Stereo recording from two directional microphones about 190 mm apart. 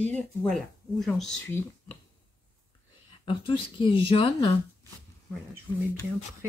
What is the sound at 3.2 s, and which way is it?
Speech, 25° left (ahead or behind).